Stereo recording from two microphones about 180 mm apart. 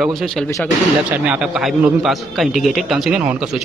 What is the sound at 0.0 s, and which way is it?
A man's voice, centre (ahead or behind).